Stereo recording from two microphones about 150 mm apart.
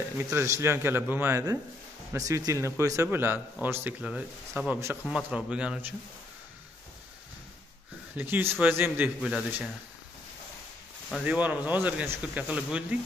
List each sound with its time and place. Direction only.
0.2 s speech: 20° right (ahead or behind)
8.2 s speech: 15° right (ahead or behind)
11.2 s speech: 10° right (ahead or behind)